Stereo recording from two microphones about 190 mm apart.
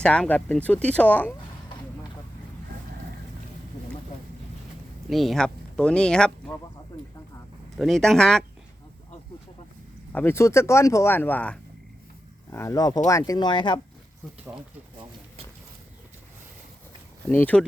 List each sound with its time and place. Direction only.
0.0 s speech: 5° left (ahead or behind)
5.0 s speech: centre (ahead or behind)
7.8 s speech: centre (ahead or behind)
10.1 s speech: 10° left (ahead or behind); by 13.7 s 25° left (ahead or behind)
17.2 s speech: 10° left (ahead or behind)